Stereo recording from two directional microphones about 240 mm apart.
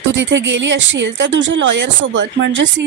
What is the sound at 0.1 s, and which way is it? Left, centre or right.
A woman's voice, right.